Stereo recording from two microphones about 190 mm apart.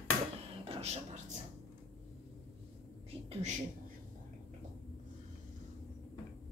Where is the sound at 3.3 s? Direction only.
35° right (ahead or behind).